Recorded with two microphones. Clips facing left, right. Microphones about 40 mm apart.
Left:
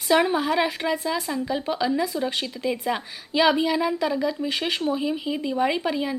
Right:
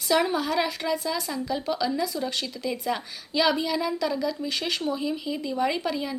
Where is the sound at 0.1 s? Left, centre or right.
Left.